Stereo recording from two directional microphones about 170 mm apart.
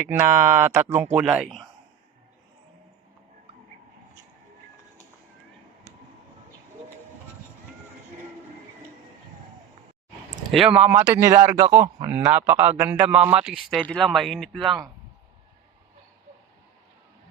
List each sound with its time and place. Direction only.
0.0 s a man's voice: 10° right (ahead or behind)
10.5 s a man's voice: 5° right (ahead or behind)